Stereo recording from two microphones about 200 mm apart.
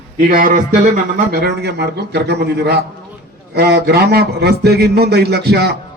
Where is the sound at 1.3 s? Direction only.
55° right (ahead or behind).